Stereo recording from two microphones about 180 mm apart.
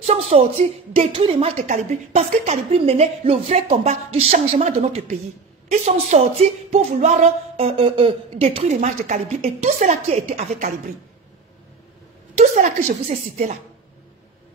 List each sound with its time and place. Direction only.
0.0 s speech: 35° right (ahead or behind)
12.4 s speech: 40° right (ahead or behind)